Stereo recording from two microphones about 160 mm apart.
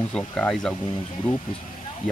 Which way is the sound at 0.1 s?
5° left (ahead or behind).